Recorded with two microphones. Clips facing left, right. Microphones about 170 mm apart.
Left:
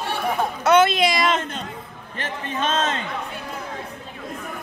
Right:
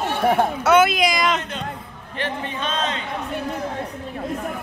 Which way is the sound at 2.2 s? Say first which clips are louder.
Right 1 dB; 45° left (ahead or behind).